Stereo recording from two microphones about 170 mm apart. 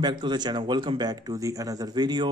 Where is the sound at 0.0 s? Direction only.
25° right (ahead or behind).